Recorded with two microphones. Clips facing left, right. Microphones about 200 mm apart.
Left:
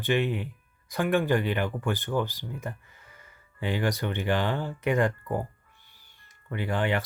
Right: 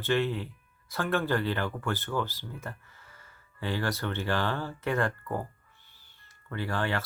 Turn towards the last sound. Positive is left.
turn(degrees=15)  # may be behind; listen again after turning